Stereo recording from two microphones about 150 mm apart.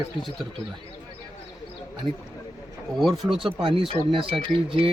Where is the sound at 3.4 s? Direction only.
35° right (ahead or behind).